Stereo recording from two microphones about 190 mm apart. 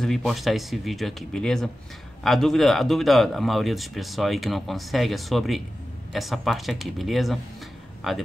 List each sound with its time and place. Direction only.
0.0 s a man's voice: centre (ahead or behind)